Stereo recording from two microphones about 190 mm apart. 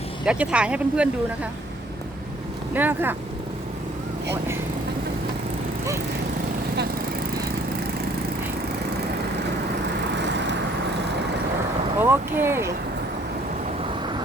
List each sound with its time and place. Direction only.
0.3 s speech: 5° right (ahead or behind)
2.7 s speech: 10° right (ahead or behind)
10.2 s vehicle: 65° right (ahead or behind)
11.9 s speech: 10° right (ahead or behind)